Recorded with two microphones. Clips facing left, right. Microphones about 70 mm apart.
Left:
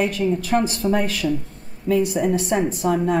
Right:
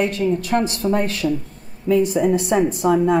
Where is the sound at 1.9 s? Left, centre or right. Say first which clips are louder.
Right 3 dB; centre.